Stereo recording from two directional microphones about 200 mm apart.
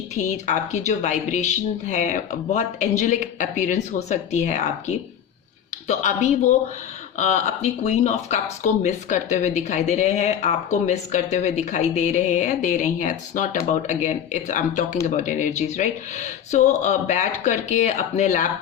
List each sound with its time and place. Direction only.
0.1 s speech: 35° left (ahead or behind)